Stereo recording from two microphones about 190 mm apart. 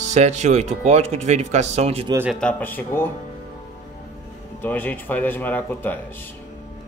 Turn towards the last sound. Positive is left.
turn(degrees=10)  # may be behind; listen again after turning